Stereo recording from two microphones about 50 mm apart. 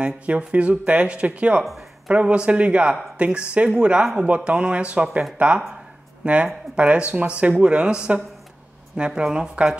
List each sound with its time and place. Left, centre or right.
0.0 s speech: right
6.2 s speech: right